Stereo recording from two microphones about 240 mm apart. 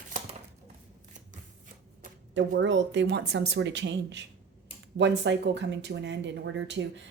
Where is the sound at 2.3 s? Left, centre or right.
Right.